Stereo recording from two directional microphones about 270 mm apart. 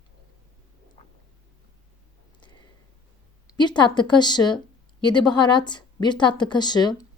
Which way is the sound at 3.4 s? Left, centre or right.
Centre.